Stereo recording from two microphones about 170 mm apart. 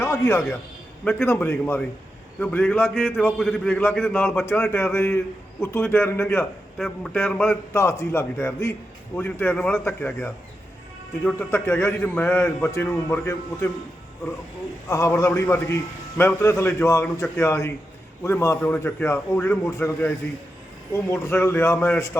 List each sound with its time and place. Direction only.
0.0 s a man's voice: 15° left (ahead or behind)
2.9 s a man's voice: centre (ahead or behind)
6.7 s a man's voice: centre (ahead or behind)
14.8 s a man's voice: 15° left (ahead or behind)